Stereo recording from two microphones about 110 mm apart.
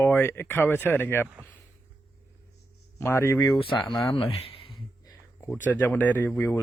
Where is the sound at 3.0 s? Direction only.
25° left (ahead or behind).